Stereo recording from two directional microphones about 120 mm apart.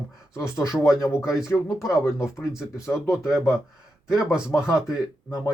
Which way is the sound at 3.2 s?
5° right (ahead or behind).